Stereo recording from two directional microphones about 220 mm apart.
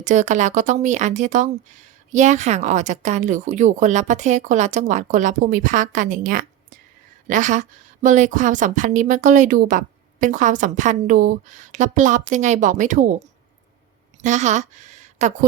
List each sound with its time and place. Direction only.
0.0 s a woman's voice: 35° right (ahead or behind)